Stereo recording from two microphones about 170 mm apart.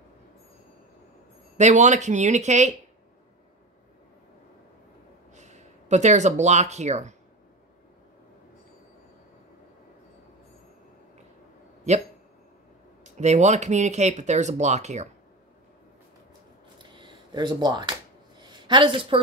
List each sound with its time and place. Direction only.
1.6 s speech: 45° right (ahead or behind)
5.3 s speech: 45° right (ahead or behind)
11.9 s speech: 40° right (ahead or behind)
16.7 s a sound: 25° right (ahead or behind)
18.7 s a woman's voice: 30° right (ahead or behind)